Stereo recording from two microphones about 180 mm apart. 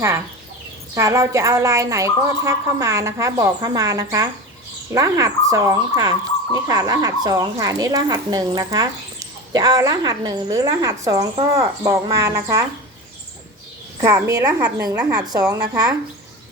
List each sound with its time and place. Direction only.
0.9 s a woman's voice: 15° right (ahead or behind)
14.0 s speech: 20° right (ahead or behind)